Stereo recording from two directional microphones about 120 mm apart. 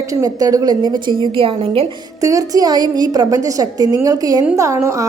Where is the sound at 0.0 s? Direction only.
30° right (ahead or behind); by 1.9 s 50° right (ahead or behind).